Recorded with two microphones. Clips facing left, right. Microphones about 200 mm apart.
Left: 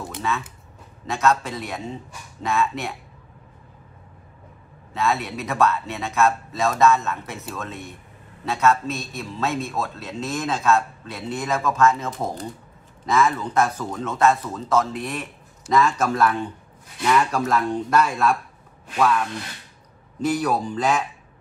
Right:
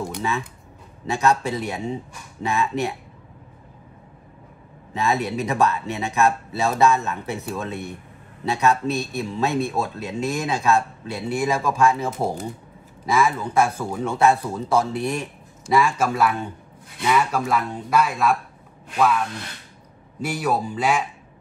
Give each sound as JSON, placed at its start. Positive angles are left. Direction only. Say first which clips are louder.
{"t": 1.0, "sound": "speech", "louder": "right 1 dB", "side_deg": -15}
{"t": 4.9, "sound": "speech", "louder": "right 2 dB", "side_deg": -15}
{"t": 20.2, "sound": "speech", "louder": "left 2 dB", "side_deg": -10}